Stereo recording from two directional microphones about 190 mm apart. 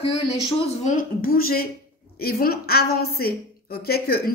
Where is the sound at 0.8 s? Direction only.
45° left (ahead or behind).